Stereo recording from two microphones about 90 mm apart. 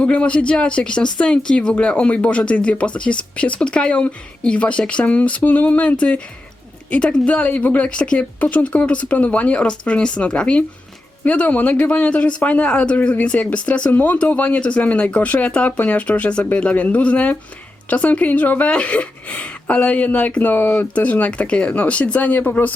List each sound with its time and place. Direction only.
0.0 s speech: 15° left (ahead or behind)